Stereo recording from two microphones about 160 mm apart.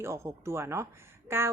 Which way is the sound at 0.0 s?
15° right (ahead or behind).